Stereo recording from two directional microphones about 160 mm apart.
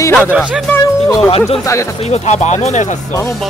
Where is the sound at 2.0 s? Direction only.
45° left (ahead or behind).